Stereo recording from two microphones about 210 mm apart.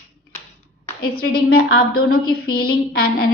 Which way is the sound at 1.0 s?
45° left (ahead or behind).